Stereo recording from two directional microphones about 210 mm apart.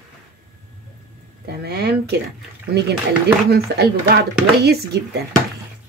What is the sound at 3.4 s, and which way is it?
Speech, 50° right (ahead or behind).